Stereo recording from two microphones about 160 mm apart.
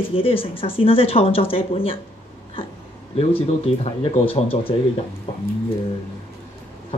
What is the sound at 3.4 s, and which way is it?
A woman's voice, 40° left (ahead or behind).